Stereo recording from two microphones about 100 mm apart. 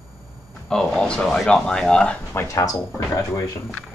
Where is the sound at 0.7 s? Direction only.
5° left (ahead or behind).